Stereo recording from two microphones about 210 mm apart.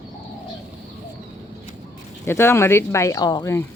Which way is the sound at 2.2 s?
10° left (ahead or behind).